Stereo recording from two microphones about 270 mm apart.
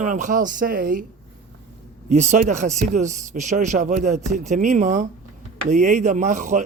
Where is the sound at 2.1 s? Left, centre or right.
Right.